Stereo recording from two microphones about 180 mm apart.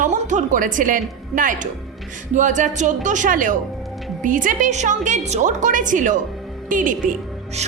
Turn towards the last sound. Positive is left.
turn(degrees=-45)  # may be behind; listen again after turning